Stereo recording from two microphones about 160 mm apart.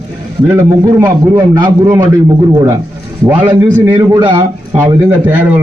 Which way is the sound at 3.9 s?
30° right (ahead or behind).